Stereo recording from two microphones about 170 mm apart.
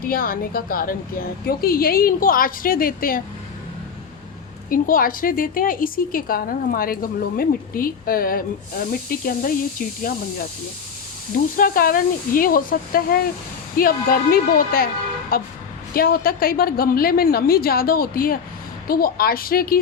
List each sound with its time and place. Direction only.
0.0 s a woman's voice: 60° left (ahead or behind)
4.7 s a woman's voice: 55° left (ahead or behind)
11.5 s a woman's voice: 55° left (ahead or behind)